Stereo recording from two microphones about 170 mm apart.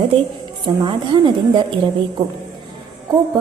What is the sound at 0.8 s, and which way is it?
A woman's voice, 25° right (ahead or behind).